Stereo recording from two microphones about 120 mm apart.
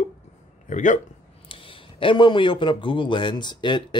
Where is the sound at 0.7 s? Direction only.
90° left.